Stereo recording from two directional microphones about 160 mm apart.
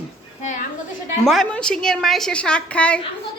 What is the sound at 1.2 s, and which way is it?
A woman's voice, centre (ahead or behind).